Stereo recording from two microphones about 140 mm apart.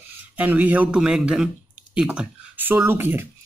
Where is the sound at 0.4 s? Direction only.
10° right (ahead or behind).